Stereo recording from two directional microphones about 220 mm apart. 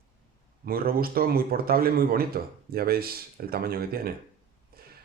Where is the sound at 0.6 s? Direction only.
40° right (ahead or behind).